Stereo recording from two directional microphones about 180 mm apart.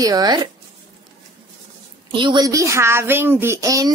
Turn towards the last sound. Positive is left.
turn(degrees=-20)  # may be behind; listen again after turning